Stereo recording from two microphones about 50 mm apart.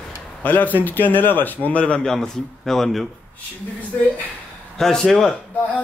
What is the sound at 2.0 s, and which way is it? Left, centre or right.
A man's voice, centre.